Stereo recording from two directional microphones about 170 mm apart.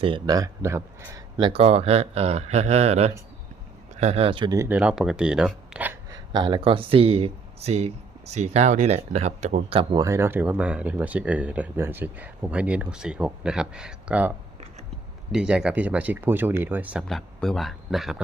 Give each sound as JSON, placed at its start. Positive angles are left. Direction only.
{"t": 0.0, "sound": "speech", "side_deg": -25}
{"t": 1.4, "sound": "speech", "side_deg": -30}
{"t": 4.5, "sound": "speech", "side_deg": -15}
{"t": 4.8, "sound": "speech", "side_deg": -5}
{"t": 6.1, "sound": "speech", "side_deg": -25}
{"t": 10.0, "sound": "speech", "side_deg": -15}
{"t": 17.1, "sound": "speech", "side_deg": 0}